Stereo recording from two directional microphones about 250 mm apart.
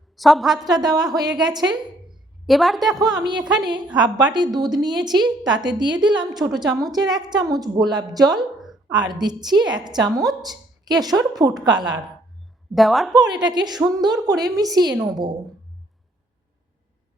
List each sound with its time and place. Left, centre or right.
0.2 s a woman's voice: centre
0.7 s a woman's voice: centre
1.7 s a sound: centre
2.9 s a woman's voice: centre
5.1 s a woman's voice: centre
5.5 s a woman's voice: centre
8.4 s a sound: centre
8.9 s a woman's voice: centre
12.7 s a woman's voice: centre
13.1 s a woman's voice: centre